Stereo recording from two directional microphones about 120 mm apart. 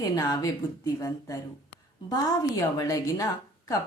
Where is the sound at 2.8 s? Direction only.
25° left (ahead or behind).